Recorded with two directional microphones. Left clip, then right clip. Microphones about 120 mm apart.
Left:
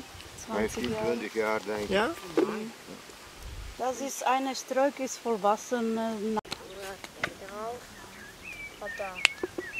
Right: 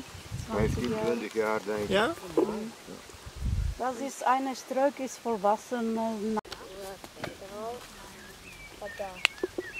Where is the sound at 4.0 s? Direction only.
25° left (ahead or behind).